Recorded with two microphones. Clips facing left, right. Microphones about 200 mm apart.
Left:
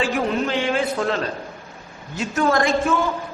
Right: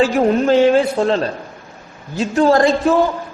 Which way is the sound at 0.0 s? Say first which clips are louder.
Right 7 dB; 40° right (ahead or behind).